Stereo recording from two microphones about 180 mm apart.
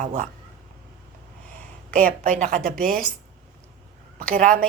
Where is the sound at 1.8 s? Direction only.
50° right (ahead or behind).